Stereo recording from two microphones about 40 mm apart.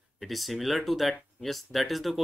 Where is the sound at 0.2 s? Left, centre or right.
Centre.